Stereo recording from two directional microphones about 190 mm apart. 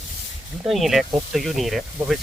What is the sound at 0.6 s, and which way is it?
Speech, centre (ahead or behind).